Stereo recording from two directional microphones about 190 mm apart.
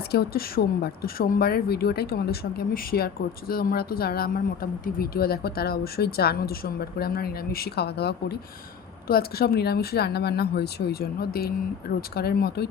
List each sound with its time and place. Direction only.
0.1 s speech: 55° left (ahead or behind)